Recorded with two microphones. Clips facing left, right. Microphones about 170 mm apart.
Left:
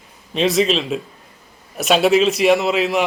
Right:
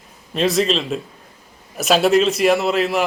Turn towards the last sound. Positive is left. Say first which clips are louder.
# left 1 dB
turn(degrees=0)  # may be behind; listen again after turning